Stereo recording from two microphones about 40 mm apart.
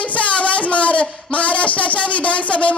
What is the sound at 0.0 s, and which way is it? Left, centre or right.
A woman's voice, left.